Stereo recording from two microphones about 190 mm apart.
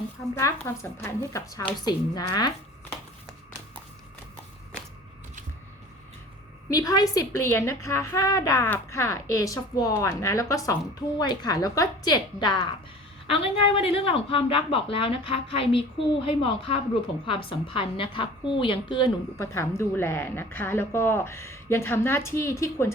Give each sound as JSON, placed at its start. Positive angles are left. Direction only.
{"t": 0.3, "sound": "a woman's voice", "side_deg": 15}
{"t": 6.7, "sound": "a woman's voice", "side_deg": 20}
{"t": 19.4, "sound": "a woman's voice", "side_deg": 15}